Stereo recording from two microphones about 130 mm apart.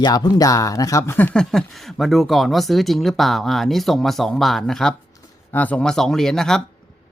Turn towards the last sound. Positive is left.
turn(degrees=5)  # may be behind; listen again after turning